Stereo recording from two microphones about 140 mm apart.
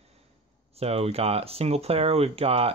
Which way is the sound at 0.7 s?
45° right (ahead or behind).